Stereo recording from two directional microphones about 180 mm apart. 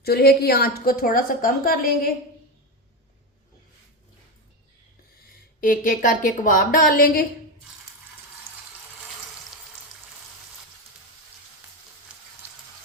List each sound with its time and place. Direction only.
0.0 s a woman's voice: 60° left (ahead or behind)
5.5 s a woman's voice: 50° left (ahead or behind)